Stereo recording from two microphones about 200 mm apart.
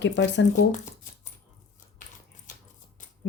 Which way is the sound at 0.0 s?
65° left (ahead or behind).